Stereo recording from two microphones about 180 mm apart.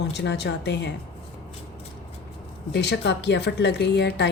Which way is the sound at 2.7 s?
70° left (ahead or behind).